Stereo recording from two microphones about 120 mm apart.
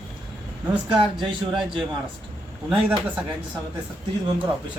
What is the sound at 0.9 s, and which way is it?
Speech, 45° right (ahead or behind).